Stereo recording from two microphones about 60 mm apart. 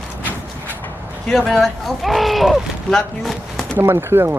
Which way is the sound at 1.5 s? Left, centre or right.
Centre.